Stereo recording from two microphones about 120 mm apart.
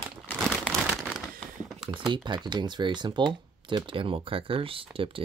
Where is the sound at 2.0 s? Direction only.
40° right (ahead or behind).